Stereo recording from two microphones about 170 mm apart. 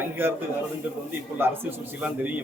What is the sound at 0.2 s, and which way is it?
Speech, 10° right (ahead or behind).